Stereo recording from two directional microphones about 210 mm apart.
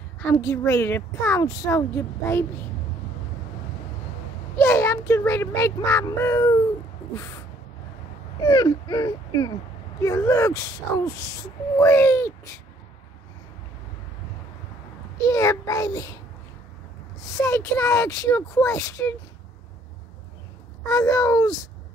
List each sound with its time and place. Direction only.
0.2 s speech: 10° left (ahead or behind)
4.6 s speech: 10° left (ahead or behind)
8.4 s speech: 20° left (ahead or behind)
15.1 s speech: 15° left (ahead or behind)
17.3 s speech: 15° left (ahead or behind)
20.8 s speech: 15° left (ahead or behind)